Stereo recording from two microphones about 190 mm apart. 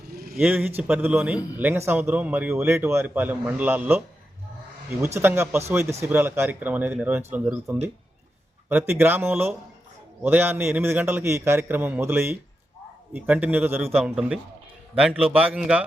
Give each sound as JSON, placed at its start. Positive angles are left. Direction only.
{"t": 0.1, "sound": "a sound", "side_deg": -50}
{"t": 0.3, "sound": "speech", "side_deg": -10}
{"t": 8.9, "sound": "a man's voice", "side_deg": -10}